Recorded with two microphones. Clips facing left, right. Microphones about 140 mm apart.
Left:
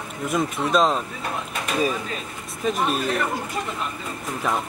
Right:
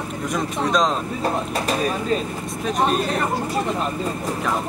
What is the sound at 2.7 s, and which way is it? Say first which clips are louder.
Speech: right 6 dB; 40° right (ahead or behind).